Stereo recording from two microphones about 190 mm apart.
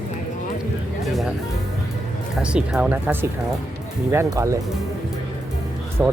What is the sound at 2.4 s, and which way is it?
Speech, 5° right (ahead or behind).